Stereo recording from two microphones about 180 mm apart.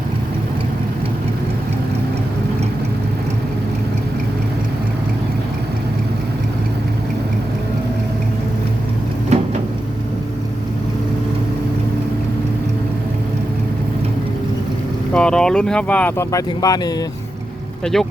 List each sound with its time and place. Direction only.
9.3 s a sound: 40° right (ahead or behind)
15.1 s speech: 5° left (ahead or behind); by 16.9 s 20° left (ahead or behind)
17.9 s speech: centre (ahead or behind)